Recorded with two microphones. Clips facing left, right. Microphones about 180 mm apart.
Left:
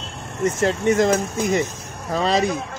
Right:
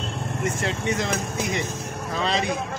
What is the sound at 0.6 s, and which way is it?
Speech, 45° left (ahead or behind).